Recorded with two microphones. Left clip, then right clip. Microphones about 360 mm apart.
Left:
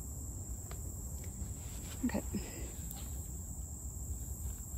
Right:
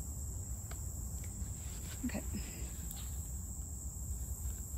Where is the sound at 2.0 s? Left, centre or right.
Left.